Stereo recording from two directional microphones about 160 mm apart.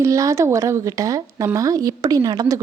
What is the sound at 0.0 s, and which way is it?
Speech, 20° right (ahead or behind).